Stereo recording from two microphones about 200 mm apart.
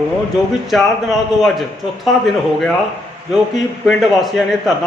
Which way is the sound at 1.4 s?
Centre (ahead or behind).